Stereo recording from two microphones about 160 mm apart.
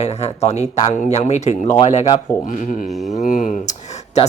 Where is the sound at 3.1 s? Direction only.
50° left (ahead or behind).